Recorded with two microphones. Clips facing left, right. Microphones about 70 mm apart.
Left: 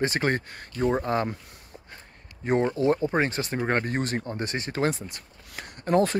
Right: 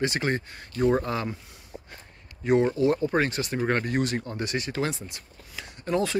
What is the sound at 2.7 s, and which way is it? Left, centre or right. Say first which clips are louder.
Speech: even; left.